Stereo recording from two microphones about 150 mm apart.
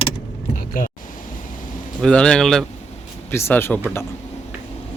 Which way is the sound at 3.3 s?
15° left (ahead or behind).